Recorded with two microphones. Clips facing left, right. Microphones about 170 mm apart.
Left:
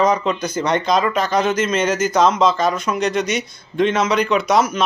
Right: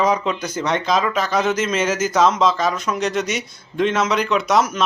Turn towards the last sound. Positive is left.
turn(degrees=0)  # may be behind; listen again after turning